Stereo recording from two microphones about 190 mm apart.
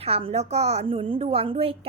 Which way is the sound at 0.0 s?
30° right (ahead or behind).